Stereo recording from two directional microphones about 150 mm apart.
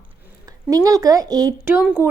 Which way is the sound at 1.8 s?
10° right (ahead or behind).